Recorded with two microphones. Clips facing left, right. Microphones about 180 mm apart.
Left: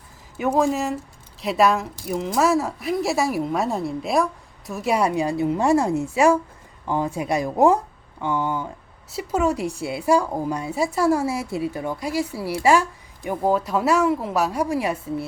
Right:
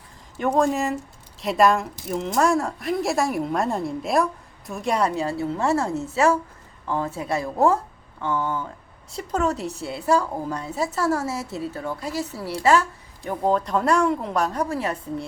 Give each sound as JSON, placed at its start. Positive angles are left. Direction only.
{"t": 0.3, "sound": "a woman's voice", "side_deg": 5}